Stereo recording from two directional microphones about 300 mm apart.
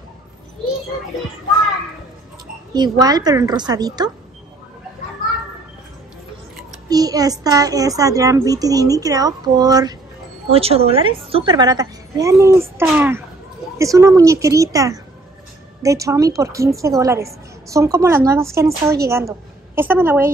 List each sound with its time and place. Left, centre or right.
2.7 s a woman's voice: centre
6.9 s a woman's voice: centre